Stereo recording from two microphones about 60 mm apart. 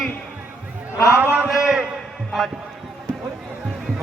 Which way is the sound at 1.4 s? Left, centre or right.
Centre.